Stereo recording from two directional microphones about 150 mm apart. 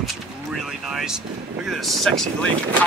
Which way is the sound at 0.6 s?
Centre (ahead or behind).